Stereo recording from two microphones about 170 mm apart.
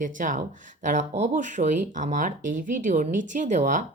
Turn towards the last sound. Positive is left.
turn(degrees=-50)  # may be behind; listen again after turning